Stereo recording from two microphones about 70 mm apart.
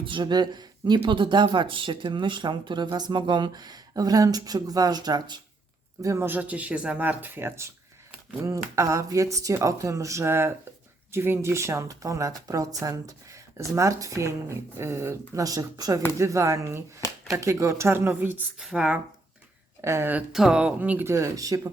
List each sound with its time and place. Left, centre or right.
0.2 s speech: right
6.0 s speech: right
6.2 s speech: right
8.4 s speech: right
15.4 s speech: right
16.1 s speech: right
18.6 s speech: centre
19.8 s a woman's voice: right
20.3 s speech: centre
21.0 s speech: right